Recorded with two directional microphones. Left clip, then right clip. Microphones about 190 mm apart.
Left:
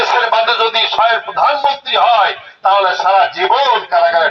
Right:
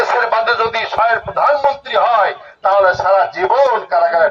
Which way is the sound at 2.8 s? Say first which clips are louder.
Left 1 dB; 35° right (ahead or behind).